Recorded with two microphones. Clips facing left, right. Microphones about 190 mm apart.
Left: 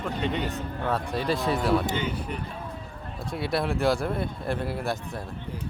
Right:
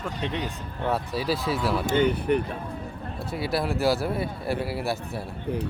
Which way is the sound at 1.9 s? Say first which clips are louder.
Right 8 dB; 55° right (ahead or behind).